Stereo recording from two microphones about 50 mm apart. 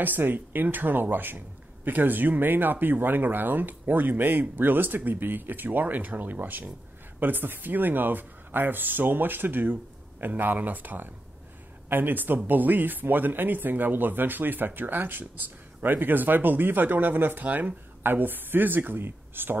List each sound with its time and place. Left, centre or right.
0.0 s speech: right
18.0 s speech: right